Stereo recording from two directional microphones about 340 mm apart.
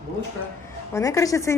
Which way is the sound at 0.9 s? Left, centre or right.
Centre.